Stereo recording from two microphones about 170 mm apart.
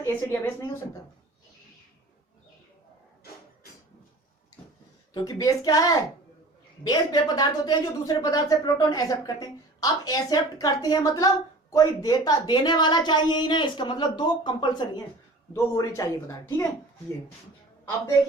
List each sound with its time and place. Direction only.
0.0 s speech: 15° left (ahead or behind)
5.1 s speech: 20° left (ahead or behind)